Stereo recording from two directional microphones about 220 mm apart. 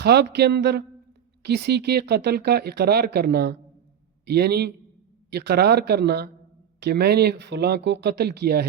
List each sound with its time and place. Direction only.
0.0 s speech: 50° right (ahead or behind)